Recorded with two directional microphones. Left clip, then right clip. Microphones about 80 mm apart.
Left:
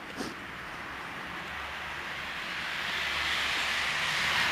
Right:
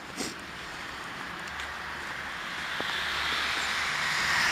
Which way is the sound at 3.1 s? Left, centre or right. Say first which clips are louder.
Even; left.